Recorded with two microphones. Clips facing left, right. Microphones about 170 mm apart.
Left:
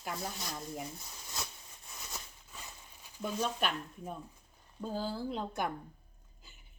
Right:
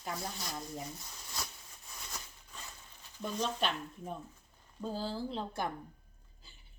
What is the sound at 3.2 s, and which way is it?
Speech, 10° left (ahead or behind).